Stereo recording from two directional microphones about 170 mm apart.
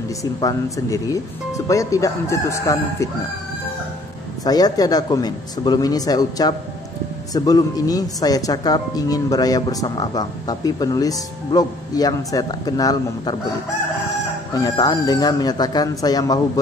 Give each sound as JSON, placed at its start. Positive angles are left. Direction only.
{"t": 0.2, "sound": "speech", "side_deg": 20}
{"t": 4.5, "sound": "speech", "side_deg": 20}
{"t": 14.5, "sound": "speech", "side_deg": 20}